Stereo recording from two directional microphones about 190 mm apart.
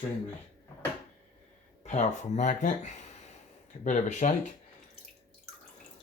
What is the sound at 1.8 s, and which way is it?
Speech, 40° left (ahead or behind).